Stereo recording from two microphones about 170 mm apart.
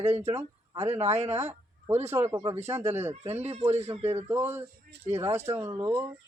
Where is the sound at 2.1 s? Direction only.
15° right (ahead or behind).